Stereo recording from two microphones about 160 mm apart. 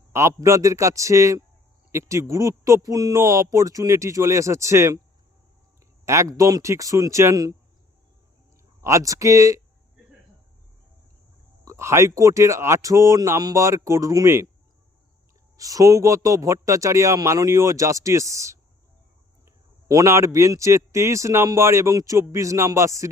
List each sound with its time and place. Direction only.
0.1 s a man's voice: 20° right (ahead or behind)
6.1 s a man's voice: 20° right (ahead or behind)
8.8 s a man's voice: 20° right (ahead or behind)
11.6 s a man's voice: 20° right (ahead or behind)
15.5 s a man's voice: 20° right (ahead or behind)